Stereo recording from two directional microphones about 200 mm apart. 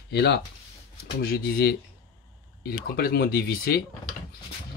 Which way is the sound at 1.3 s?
50° left (ahead or behind).